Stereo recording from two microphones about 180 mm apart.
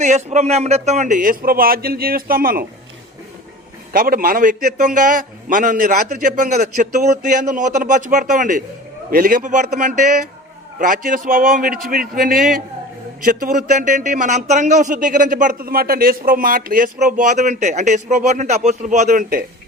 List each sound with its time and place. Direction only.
0.0 s a man's voice: 40° right (ahead or behind)
3.9 s a man's voice: 50° right (ahead or behind)